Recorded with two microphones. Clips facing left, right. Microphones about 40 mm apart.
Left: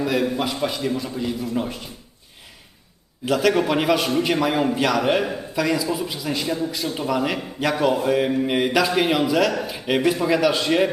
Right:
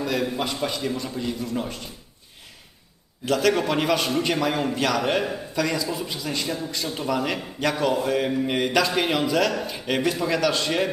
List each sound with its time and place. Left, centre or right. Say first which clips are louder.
0.0 s a man's voice: left 3 dB; centre
3.2 s a man's voice: left 2 dB; centre